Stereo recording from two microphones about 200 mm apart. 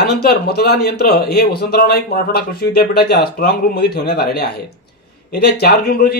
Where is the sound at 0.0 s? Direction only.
50° left (ahead or behind).